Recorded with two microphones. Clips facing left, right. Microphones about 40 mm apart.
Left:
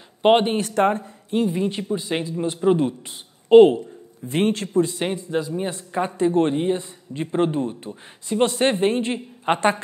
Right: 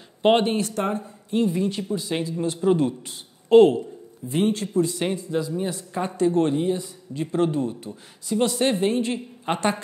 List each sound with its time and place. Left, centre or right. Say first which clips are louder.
0.2 s speech: left 2 dB; centre
0.6 s a man's voice: left 5 dB; left
1.3 s speech: left 1 dB; centre
4.3 s speech: left 1 dB; left
5.0 s speech: left 1 dB; left